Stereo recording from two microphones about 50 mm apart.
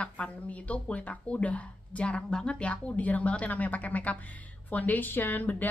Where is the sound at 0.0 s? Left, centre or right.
Left.